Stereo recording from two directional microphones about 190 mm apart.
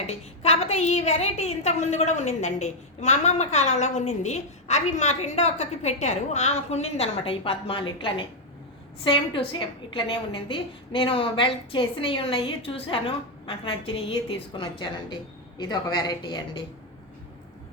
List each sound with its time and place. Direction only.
0.1 s a woman's voice: 35° left (ahead or behind)